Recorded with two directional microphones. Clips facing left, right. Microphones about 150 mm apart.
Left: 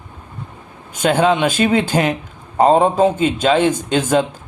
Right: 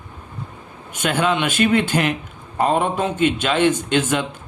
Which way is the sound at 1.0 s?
35° left (ahead or behind).